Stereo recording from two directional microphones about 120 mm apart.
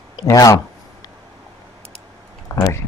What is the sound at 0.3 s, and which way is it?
Speech, 30° left (ahead or behind).